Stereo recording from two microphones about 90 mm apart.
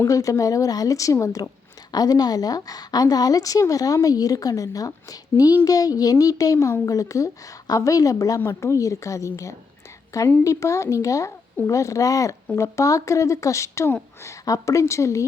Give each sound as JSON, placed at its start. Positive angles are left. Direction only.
{"t": 0.1, "sound": "a woman's voice", "side_deg": 40}